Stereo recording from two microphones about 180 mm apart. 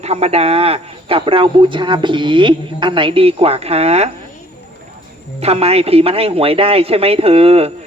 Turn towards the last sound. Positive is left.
turn(degrees=-35)  # may be behind; listen again after turning